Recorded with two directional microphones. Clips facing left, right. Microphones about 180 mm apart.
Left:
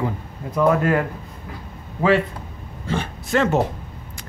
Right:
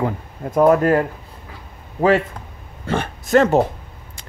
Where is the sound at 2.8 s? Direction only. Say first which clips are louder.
Right 3 dB; 55° right (ahead or behind).